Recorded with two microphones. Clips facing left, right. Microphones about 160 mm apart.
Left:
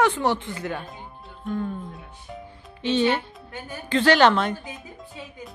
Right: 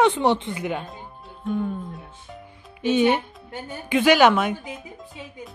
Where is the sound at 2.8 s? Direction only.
10° right (ahead or behind).